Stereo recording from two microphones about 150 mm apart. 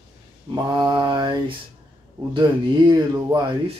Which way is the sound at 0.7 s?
25° right (ahead or behind).